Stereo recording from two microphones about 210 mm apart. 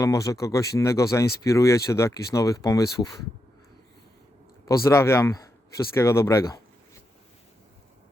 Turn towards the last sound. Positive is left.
turn(degrees=15)  # may be behind; listen again after turning